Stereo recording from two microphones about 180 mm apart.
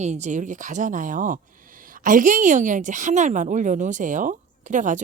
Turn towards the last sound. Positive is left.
turn(degrees=-45)  # may be behind; listen again after turning